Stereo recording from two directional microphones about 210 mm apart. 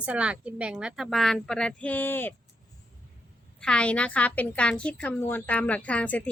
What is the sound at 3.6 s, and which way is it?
A woman's voice, 5° left (ahead or behind).